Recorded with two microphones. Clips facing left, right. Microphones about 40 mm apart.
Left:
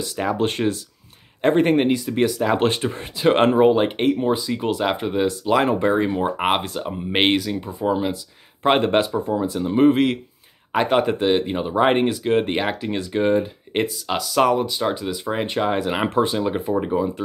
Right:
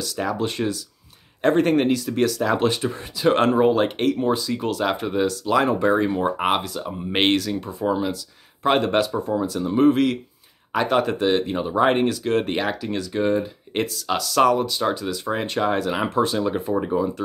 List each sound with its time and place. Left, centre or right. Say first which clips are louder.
0.0 s speech: left 2 dB; left
0.4 s speech: left 3 dB; left
1.4 s speech: left 1 dB; left
2.5 s speech: left 1 dB; left; by 6.6 s centre
6.6 s speech: left 2 dB; left
7.1 s speech: left 1 dB; centre
8.6 s speech: left 2 dB; left